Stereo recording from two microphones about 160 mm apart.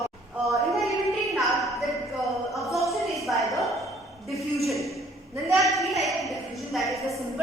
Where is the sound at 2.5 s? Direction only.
Centre (ahead or behind).